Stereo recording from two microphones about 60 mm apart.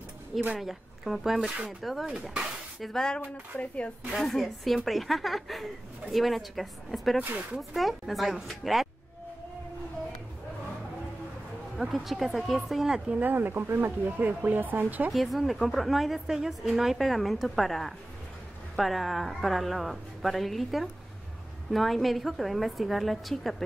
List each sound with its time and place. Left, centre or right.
0.6 s a woman's voice: centre
2.9 s speech: centre
3.5 s speech: left
4.1 s a woman's voice: centre
11.7 s a woman's voice: centre
13.1 s speech: right
14.0 s speech: right
15.0 s a woman's voice: centre